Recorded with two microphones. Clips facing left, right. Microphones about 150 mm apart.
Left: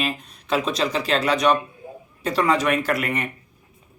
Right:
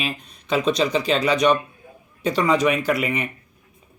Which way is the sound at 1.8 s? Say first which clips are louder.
Left 8 dB; 30° left (ahead or behind).